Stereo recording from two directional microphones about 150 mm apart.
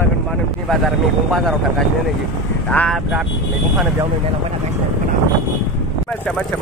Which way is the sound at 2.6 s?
5° left (ahead or behind).